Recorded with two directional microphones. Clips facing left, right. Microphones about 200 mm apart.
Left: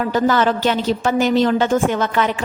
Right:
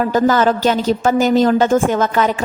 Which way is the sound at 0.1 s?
45° right (ahead or behind).